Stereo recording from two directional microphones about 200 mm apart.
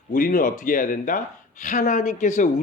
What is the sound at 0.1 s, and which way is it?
Speech, 45° left (ahead or behind).